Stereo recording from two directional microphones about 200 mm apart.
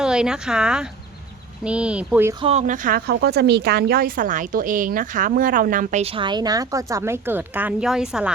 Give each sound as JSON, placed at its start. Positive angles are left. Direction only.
{"t": 0.0, "sound": "speech", "side_deg": -5}
{"t": 2.4, "sound": "a woman's voice", "side_deg": -35}